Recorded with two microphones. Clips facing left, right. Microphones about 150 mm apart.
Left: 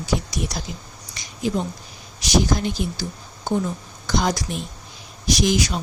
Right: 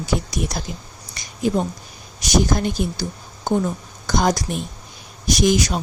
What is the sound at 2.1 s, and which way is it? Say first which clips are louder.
Speech: right 1 dB; 50° right (ahead or behind).